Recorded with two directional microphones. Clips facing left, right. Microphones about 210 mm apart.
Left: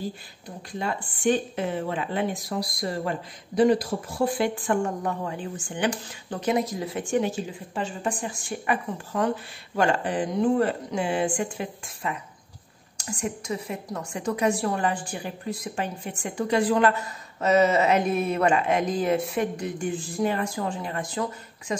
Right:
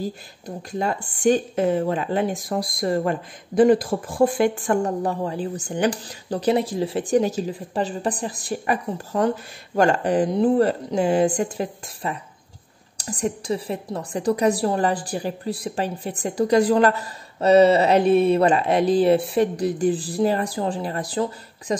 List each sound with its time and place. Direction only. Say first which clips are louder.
0.7 s a woman's voice: right 5 dB; 45° right (ahead or behind)